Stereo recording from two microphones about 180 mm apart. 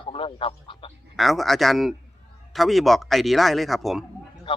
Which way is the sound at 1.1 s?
Centre (ahead or behind).